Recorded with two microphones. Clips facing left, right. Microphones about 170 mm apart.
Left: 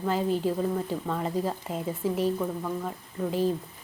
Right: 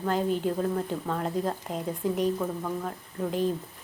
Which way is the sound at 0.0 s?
Centre (ahead or behind).